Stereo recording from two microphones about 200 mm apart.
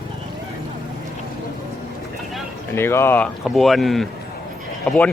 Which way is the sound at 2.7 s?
10° left (ahead or behind).